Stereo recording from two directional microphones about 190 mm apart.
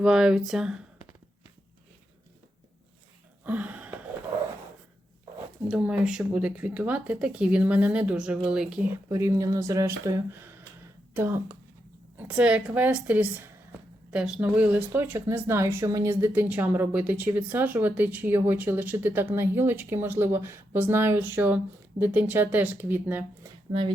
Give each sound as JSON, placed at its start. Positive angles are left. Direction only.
{"t": 0.0, "sound": "speech", "side_deg": -5}
{"t": 3.4, "sound": "a sound", "side_deg": -10}
{"t": 5.6, "sound": "speech", "side_deg": -5}
{"t": 9.0, "sound": "speech", "side_deg": -15}